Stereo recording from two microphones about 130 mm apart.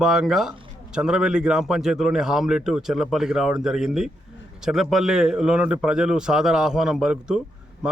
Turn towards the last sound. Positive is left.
turn(degrees=-5)  # may be behind; listen again after turning